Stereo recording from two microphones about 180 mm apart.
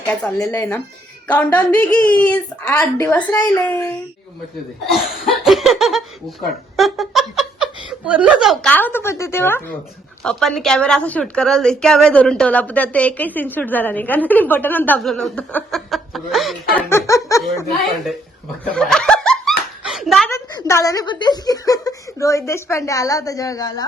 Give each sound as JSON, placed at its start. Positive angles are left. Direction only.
{"t": 0.3, "sound": "a woman's voice", "side_deg": 10}
{"t": 4.9, "sound": "a sound", "side_deg": 0}
{"t": 6.7, "sound": "a woman's voice", "side_deg": 0}
{"t": 16.9, "sound": "a woman's voice", "side_deg": 15}
{"t": 18.6, "sound": "snicker", "side_deg": 5}
{"t": 20.3, "sound": "speech", "side_deg": 15}